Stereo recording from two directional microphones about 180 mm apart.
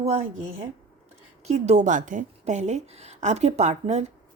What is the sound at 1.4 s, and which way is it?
A woman's voice, 35° right (ahead or behind).